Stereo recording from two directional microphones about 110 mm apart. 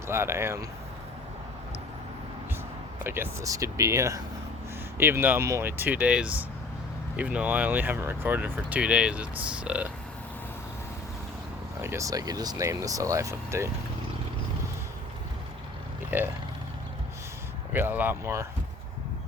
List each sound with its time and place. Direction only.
0.1 s speech: 20° right (ahead or behind)
3.0 s speech: 20° right (ahead or behind)
11.8 s speech: 25° right (ahead or behind)
16.0 s speech: 20° right (ahead or behind)
17.7 s speech: 15° right (ahead or behind)